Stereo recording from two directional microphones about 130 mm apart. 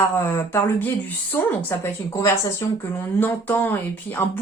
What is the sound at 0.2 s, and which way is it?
Speech, 20° left (ahead or behind).